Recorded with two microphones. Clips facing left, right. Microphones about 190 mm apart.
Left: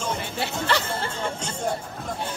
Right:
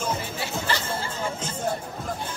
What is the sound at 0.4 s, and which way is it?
Music, 65° left (ahead or behind).